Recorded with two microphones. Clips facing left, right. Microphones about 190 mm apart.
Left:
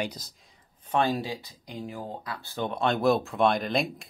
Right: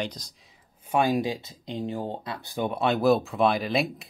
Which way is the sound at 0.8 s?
10° right (ahead or behind).